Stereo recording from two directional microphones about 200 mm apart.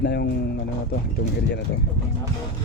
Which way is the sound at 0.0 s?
55° left (ahead or behind).